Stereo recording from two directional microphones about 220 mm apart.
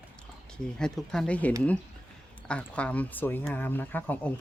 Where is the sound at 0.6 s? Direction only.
5° left (ahead or behind).